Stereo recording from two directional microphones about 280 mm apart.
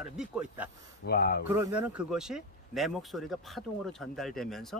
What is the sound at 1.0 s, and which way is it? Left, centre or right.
Speech, left.